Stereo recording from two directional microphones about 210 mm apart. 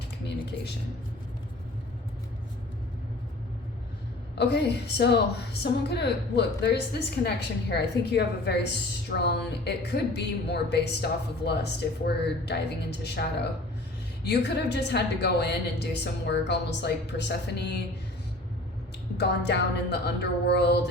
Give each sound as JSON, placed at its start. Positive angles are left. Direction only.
{"t": 4.4, "sound": "a woman's voice", "side_deg": 55}
{"t": 19.1, "sound": "a woman's voice", "side_deg": 55}